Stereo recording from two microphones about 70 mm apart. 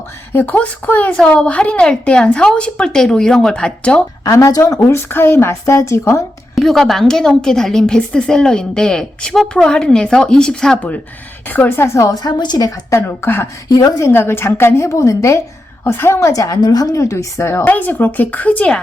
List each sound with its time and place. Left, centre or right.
0.3 s a woman's voice: left
4.2 s speech: left
4.8 s a woman's voice: left
6.6 s a woman's voice: centre
11.4 s speech: left
11.9 s a woman's voice: left
13.0 s a woman's voice: left
13.7 s a woman's voice: left
14.0 s a woman's voice: left
16.3 s a woman's voice: left
17.7 s speech: left